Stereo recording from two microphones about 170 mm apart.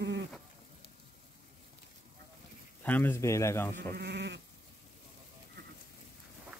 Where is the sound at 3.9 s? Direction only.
80° right.